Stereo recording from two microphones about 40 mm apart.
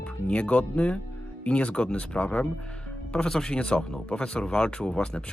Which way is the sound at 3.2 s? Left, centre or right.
Centre.